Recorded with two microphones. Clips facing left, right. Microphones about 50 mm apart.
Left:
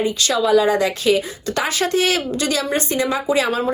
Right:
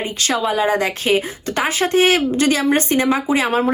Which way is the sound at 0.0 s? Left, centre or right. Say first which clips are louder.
Left 1 dB; right.